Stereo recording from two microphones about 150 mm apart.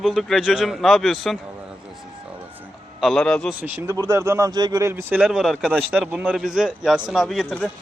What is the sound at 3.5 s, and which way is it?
A man's voice, 15° right (ahead or behind).